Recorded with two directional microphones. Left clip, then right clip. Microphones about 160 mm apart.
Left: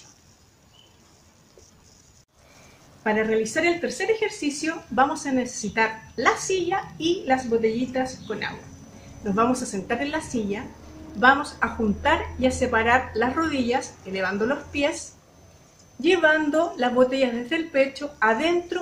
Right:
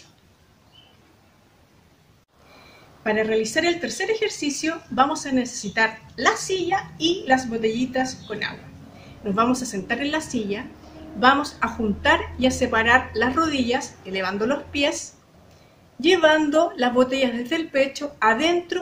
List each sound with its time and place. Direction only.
3.0 s a woman's voice: 15° right (ahead or behind)
16.0 s a woman's voice: 15° right (ahead or behind)